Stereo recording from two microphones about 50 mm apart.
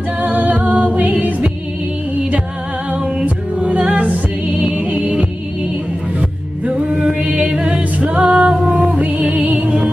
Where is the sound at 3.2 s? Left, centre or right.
Right.